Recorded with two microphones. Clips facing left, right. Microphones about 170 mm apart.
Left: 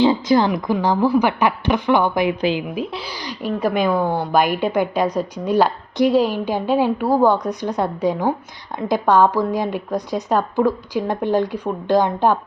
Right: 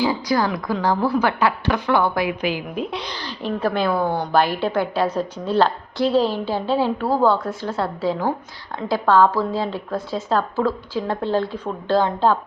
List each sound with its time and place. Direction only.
0.0 s a woman's voice: 25° left (ahead or behind)
2.7 s a woman's voice: 5° left (ahead or behind)